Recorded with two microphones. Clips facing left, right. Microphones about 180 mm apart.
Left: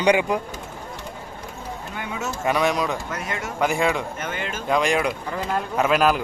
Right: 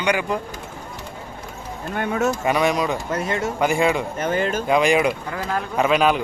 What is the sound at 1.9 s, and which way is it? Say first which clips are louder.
Speech: right 10 dB; 55° right (ahead or behind).